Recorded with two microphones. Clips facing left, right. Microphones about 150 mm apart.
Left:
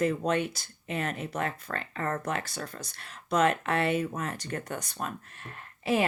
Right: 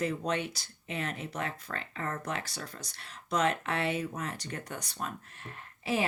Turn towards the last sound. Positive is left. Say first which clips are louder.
# left 4 dB
turn(degrees=55)  # may be behind; listen again after turning